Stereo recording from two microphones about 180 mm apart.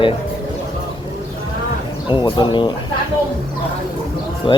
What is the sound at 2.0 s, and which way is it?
Speech, 25° left (ahead or behind).